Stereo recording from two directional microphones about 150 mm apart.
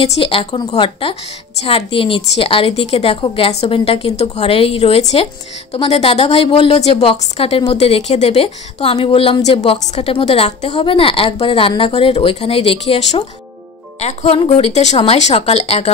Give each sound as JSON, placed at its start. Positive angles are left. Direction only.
{"t": 0.0, "sound": "a woman's voice", "side_deg": 35}